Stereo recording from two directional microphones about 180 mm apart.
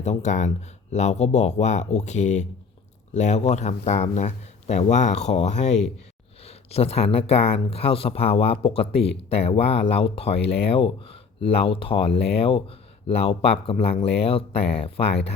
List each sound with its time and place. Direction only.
0.0 s speech: 40° left (ahead or behind)